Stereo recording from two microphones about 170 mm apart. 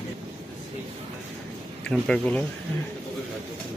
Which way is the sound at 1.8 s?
5° left (ahead or behind).